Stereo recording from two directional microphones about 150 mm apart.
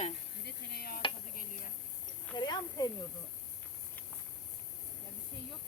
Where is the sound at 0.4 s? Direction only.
90° left.